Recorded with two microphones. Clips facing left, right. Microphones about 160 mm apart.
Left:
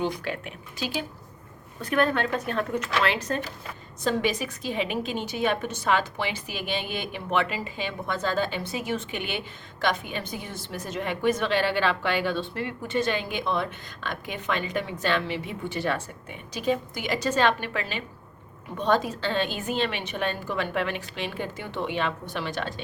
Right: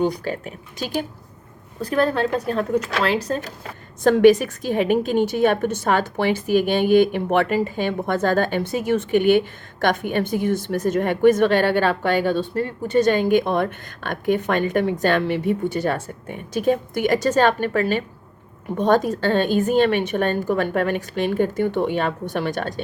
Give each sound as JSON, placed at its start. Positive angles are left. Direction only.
{"t": 0.0, "sound": "speech", "side_deg": -40}
{"t": 4.0, "sound": "speech", "side_deg": -50}